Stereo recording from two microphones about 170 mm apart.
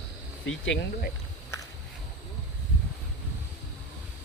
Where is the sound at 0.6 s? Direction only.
90° left.